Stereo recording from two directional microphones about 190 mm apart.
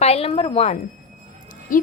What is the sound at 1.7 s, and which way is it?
Speech, 45° left (ahead or behind).